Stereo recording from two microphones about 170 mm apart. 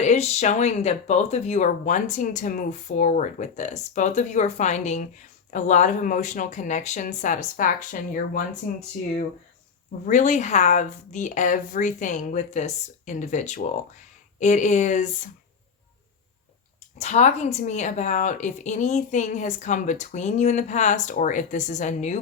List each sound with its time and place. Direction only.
0.0 s speech: 40° left (ahead or behind)
10.1 s speech: 45° left (ahead or behind)
17.0 s speech: 40° left (ahead or behind)